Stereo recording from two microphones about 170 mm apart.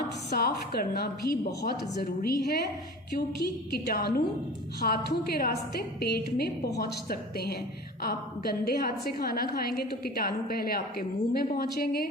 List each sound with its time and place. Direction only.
0.3 s a woman's voice: 65° left (ahead or behind)